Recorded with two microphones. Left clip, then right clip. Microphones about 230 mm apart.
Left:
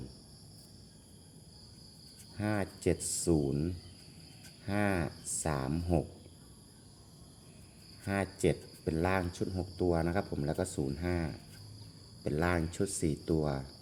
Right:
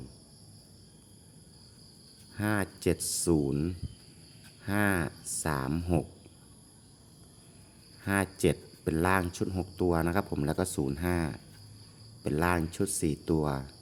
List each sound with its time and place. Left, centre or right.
2.3 s speech: centre
8.0 s speech: centre